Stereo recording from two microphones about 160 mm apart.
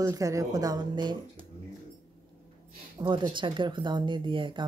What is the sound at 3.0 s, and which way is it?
Speech, 30° right (ahead or behind).